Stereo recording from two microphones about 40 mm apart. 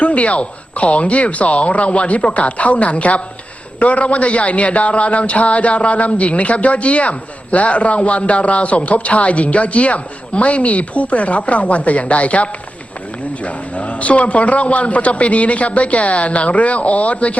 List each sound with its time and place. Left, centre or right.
0.0 s a man's voice: left